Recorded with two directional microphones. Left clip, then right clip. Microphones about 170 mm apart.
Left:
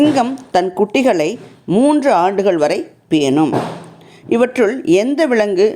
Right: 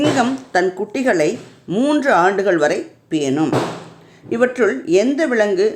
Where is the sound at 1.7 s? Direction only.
20° left (ahead or behind).